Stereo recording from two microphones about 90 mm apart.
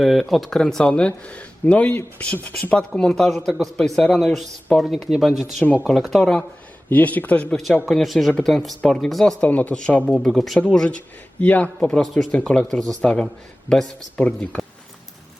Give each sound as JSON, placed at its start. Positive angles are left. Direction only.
{"t": 0.0, "sound": "speech", "side_deg": 0}
{"t": 6.9, "sound": "speech", "side_deg": 20}
{"t": 7.5, "sound": "speech", "side_deg": 5}
{"t": 9.4, "sound": "speech", "side_deg": 15}